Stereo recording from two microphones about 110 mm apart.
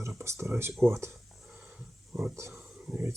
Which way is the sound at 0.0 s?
25° right (ahead or behind).